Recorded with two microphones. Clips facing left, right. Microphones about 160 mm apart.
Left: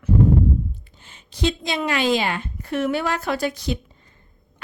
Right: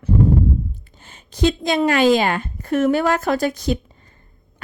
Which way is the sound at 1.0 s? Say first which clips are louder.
Right 5 dB; 45° right (ahead or behind).